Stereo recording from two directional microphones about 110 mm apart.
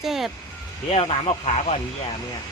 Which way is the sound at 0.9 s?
60° left (ahead or behind).